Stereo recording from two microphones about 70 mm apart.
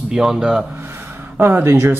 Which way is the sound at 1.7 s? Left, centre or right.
Right.